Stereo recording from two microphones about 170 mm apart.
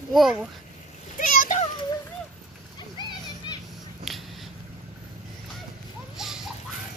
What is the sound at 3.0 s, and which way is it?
Children playing, 25° left (ahead or behind).